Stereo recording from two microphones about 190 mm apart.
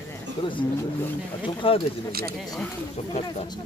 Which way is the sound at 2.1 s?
55° right (ahead or behind).